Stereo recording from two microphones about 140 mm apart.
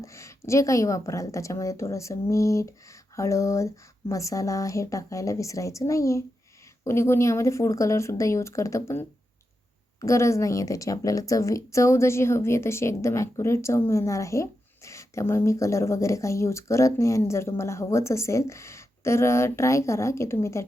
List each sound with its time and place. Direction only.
0.0 s a woman's voice: 20° left (ahead or behind)